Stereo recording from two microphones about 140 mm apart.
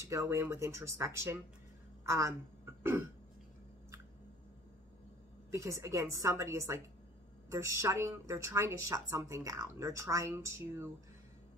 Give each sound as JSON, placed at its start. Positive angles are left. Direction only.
{"t": 0.0, "sound": "a woman's voice", "side_deg": -20}
{"t": 5.5, "sound": "a woman's voice", "side_deg": -20}